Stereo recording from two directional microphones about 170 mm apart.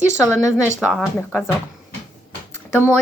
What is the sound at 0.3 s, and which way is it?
Speech, 5° right (ahead or behind).